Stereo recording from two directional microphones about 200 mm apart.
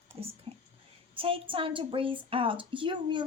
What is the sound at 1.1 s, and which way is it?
A woman's voice, 25° right (ahead or behind).